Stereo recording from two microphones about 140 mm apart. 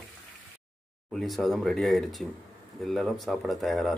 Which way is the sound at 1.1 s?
Centre (ahead or behind).